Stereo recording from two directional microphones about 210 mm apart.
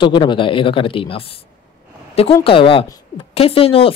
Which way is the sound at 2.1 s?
30° left (ahead or behind).